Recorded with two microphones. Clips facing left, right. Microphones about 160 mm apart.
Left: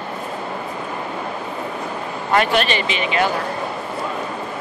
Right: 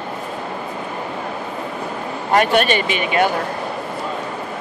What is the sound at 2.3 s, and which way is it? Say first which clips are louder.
Speech: right 2 dB; 45° right (ahead or behind).